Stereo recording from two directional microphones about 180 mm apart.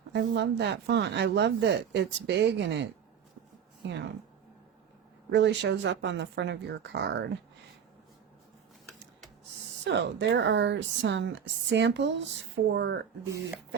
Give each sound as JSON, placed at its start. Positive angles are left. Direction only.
{"t": 0.1, "sound": "a woman's voice", "side_deg": -65}
{"t": 5.3, "sound": "a woman's voice", "side_deg": -75}
{"t": 9.8, "sound": "a woman's voice", "side_deg": -80}